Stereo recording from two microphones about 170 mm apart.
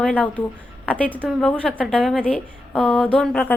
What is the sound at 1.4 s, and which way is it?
A woman's voice, 5° left (ahead or behind).